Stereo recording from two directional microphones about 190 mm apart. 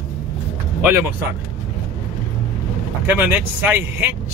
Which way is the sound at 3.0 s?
10° right (ahead or behind).